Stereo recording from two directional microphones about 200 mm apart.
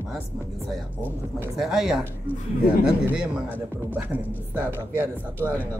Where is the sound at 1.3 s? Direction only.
Centre (ahead or behind).